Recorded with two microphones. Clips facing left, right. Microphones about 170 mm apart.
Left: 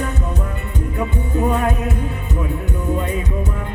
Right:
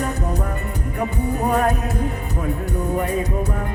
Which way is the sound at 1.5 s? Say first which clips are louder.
Even; 40° right (ahead or behind).